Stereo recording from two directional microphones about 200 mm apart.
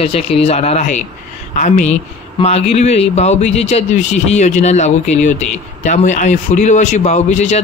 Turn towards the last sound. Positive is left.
turn(degrees=35)  # may be behind; listen again after turning